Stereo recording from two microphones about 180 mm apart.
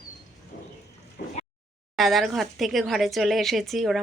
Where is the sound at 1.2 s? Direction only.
60° left (ahead or behind).